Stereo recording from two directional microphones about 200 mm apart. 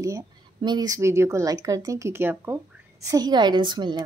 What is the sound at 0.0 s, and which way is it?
Speech, 20° right (ahead or behind).